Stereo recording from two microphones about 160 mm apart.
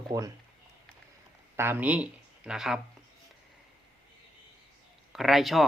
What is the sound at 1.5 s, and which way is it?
Speech, 15° right (ahead or behind).